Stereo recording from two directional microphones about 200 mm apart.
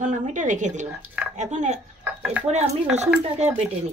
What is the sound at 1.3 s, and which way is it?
A woman's voice, 35° right (ahead or behind).